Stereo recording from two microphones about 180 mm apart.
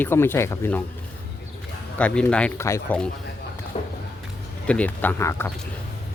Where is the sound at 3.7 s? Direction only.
35° left (ahead or behind).